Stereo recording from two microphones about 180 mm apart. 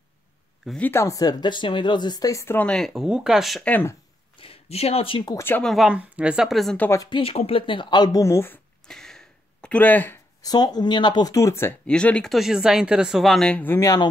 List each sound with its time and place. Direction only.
0.7 s speech: 10° left (ahead or behind)
4.4 s speech: 35° left (ahead or behind); by 5.7 s 10° left (ahead or behind)
5.7 s speech: 5° right (ahead or behind)
6.9 s speech: 20° left (ahead or behind)
8.8 s a sound: centre (ahead or behind)
10.4 s speech: 20° left (ahead or behind)